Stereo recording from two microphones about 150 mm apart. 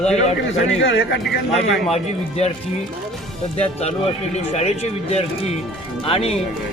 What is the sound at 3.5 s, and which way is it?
Speech, 45° left (ahead or behind).